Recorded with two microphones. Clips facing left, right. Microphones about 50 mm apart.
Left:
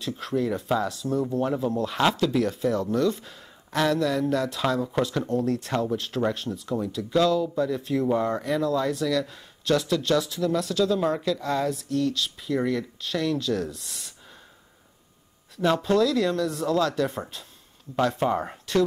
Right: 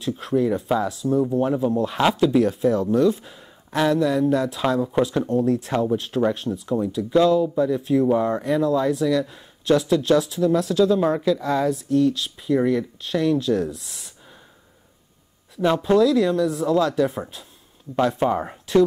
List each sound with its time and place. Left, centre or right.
0.0 s speech: centre
8.6 s speech: centre
13.8 s sigh: centre
15.5 s speech: centre
17.1 s speech: centre
18.2 s speech: centre